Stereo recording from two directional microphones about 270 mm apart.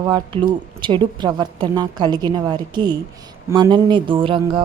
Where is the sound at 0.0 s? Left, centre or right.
Centre.